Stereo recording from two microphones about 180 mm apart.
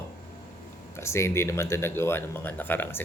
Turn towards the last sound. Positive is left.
turn(degrees=10)  # may be behind; listen again after turning